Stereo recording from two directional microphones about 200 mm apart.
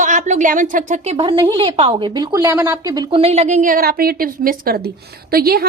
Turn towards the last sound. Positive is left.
turn(degrees=-50)  # may be behind; listen again after turning